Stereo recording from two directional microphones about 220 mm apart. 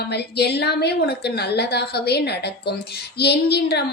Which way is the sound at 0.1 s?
50° left (ahead or behind).